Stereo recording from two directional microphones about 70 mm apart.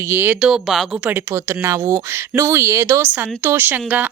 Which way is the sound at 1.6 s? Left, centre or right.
Right.